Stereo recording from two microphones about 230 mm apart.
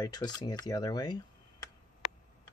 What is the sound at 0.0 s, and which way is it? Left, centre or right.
Speech, centre.